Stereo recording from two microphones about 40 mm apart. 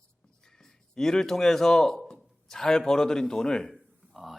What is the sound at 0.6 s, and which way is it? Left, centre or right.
A man's voice, centre.